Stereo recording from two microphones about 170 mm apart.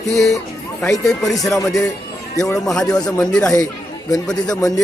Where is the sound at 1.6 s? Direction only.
20° left (ahead or behind).